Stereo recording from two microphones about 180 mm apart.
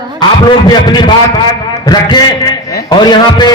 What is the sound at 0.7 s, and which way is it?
A man's voice, 25° left (ahead or behind).